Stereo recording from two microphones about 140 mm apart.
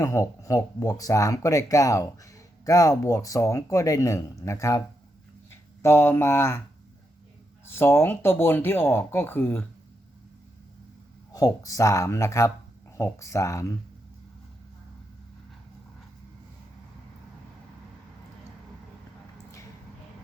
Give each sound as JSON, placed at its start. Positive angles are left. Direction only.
{"t": 0.0, "sound": "speech", "side_deg": 20}
{"t": 5.8, "sound": "speech", "side_deg": 20}
{"t": 7.7, "sound": "speech", "side_deg": 15}
{"t": 11.3, "sound": "speech", "side_deg": 25}